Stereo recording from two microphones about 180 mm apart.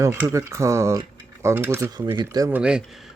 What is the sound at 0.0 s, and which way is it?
Speech, 15° right (ahead or behind).